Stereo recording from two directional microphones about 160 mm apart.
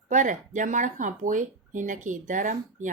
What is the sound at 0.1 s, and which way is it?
Speech, 50° right (ahead or behind).